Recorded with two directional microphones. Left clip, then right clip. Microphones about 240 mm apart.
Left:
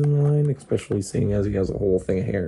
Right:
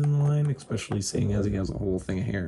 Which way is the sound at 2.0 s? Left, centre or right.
Right.